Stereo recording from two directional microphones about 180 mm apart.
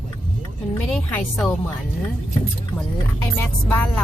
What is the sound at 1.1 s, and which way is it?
Speech, 5° left (ahead or behind).